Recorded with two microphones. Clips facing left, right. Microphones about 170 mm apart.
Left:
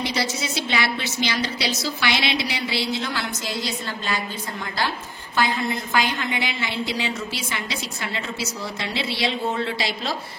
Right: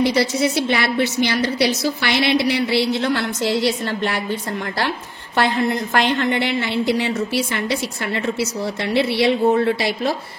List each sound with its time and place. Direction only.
0.0 s a woman's voice: 60° right (ahead or behind)
8.9 s a woman's voice: 55° right (ahead or behind)